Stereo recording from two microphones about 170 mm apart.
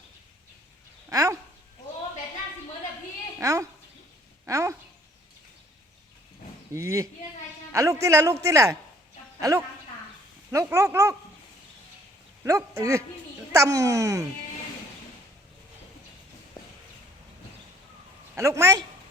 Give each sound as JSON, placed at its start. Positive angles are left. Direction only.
{"t": 1.1, "sound": "speech", "side_deg": -20}
{"t": 3.4, "sound": "a woman's voice", "side_deg": -20}
{"t": 4.4, "sound": "a sound", "side_deg": -20}
{"t": 6.7, "sound": "speech", "side_deg": -15}
{"t": 7.7, "sound": "a sound", "side_deg": -20}
{"t": 8.0, "sound": "a child's voice", "side_deg": -20}
{"t": 12.4, "sound": "a child's voice", "side_deg": -20}
{"t": 18.3, "sound": "speech", "side_deg": -15}